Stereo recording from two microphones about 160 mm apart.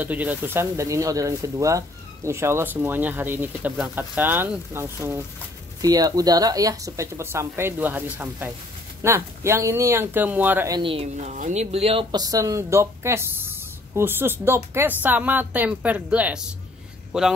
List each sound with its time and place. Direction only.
0.0 s speech: 10° right (ahead or behind)
10.7 s speech: 35° right (ahead or behind)
11.3 s speech: 50° right (ahead or behind); by 17.3 s 5° right (ahead or behind)